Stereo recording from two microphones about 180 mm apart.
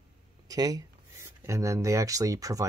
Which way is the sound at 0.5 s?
20° right (ahead or behind).